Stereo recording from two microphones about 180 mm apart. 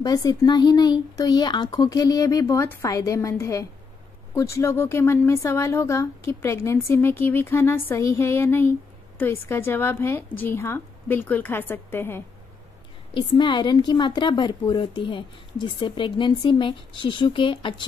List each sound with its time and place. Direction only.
0.0 s a woman's voice: 20° left (ahead or behind)
13.1 s a woman's voice: 25° left (ahead or behind)